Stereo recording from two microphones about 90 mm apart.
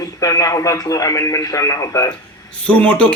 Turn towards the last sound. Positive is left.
turn(degrees=15)  # may be behind; listen again after turning